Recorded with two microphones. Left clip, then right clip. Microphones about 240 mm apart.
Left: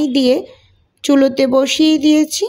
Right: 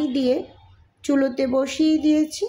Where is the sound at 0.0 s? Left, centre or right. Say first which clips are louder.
Left 8 dB; left.